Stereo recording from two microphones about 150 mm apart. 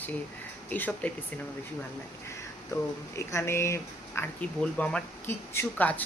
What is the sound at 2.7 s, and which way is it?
Speech, 20° left (ahead or behind).